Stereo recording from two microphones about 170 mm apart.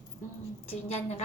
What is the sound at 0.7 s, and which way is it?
Speech, 40° left (ahead or behind).